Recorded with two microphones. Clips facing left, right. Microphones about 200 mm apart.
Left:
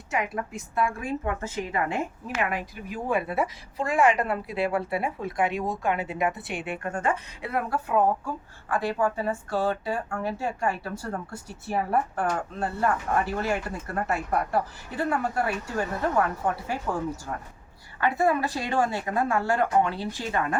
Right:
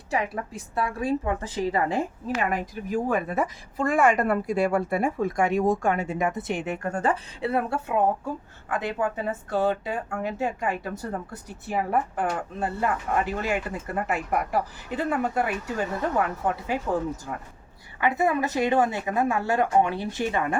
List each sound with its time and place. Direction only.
0.1 s a woman's voice: 30° right (ahead or behind)
18.0 s speech: 20° right (ahead or behind)